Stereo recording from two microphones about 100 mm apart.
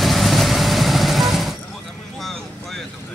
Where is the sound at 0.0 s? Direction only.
Centre (ahead or behind).